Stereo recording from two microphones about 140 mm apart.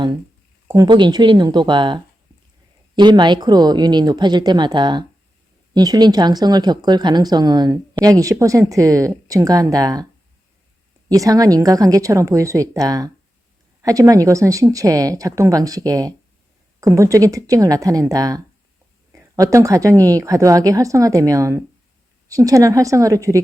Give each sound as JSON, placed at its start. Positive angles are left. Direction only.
{"t": 0.7, "sound": "speech", "side_deg": -30}
{"t": 11.1, "sound": "speech", "side_deg": -25}